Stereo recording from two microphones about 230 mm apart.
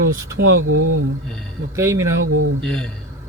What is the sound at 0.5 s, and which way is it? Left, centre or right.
Speech, right.